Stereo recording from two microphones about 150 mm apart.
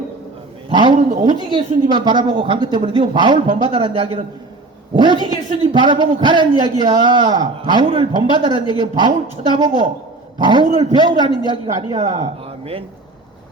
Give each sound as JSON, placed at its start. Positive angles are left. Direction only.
{"t": 0.7, "sound": "a man's voice", "side_deg": -30}